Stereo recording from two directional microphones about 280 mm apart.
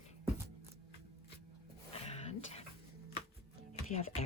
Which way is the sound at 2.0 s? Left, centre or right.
Left.